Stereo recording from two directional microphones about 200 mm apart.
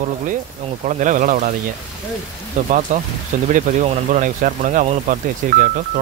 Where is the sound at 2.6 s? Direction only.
40° right (ahead or behind).